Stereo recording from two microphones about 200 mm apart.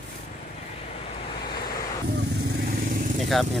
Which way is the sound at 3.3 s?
Centre (ahead or behind).